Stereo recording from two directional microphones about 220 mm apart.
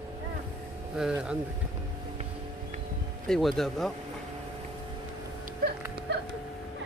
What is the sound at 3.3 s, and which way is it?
Speech, centre (ahead or behind).